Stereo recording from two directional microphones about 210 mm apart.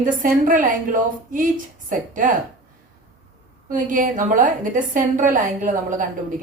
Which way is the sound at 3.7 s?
40° right (ahead or behind).